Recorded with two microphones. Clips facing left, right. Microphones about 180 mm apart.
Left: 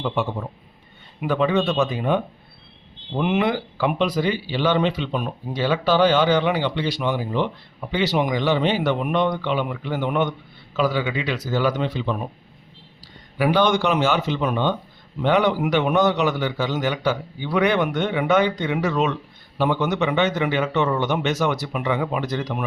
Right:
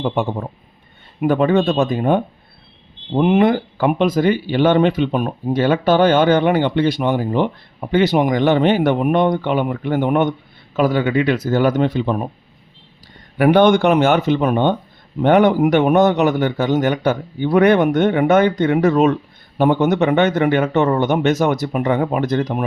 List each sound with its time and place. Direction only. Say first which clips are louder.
0.0 s a man's voice: right 4 dB; 45° right (ahead or behind)
13.3 s a man's voice: right 7 dB; 55° right (ahead or behind)